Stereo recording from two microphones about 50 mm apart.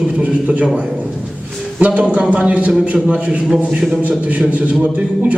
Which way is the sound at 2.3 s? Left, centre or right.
Right.